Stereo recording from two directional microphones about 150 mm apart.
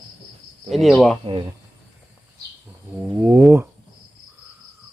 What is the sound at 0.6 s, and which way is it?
Speech, centre (ahead or behind).